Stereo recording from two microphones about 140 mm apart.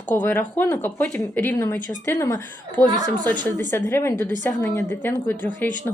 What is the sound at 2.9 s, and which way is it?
Speech, 30° right (ahead or behind).